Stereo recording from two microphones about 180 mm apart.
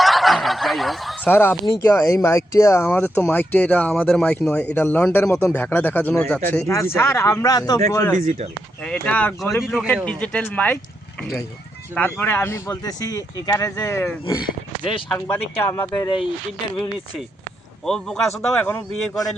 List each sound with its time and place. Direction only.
0.0 s fowl: centre (ahead or behind)
1.8 s speech: 15° left (ahead or behind)
8.2 s speech: 40° right (ahead or behind)
8.8 s speech: 5° left (ahead or behind)
14.4 s speech: 30° left (ahead or behind)
15.1 s speech: 10° left (ahead or behind)
15.9 s speech: 25° left (ahead or behind)
17.8 s speech: 5° left (ahead or behind)